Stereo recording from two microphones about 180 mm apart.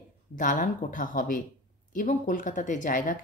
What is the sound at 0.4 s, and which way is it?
A woman's voice, 45° left (ahead or behind).